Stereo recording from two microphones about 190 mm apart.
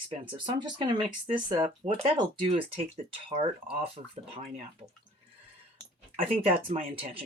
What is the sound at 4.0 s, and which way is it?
Speech, 35° right (ahead or behind).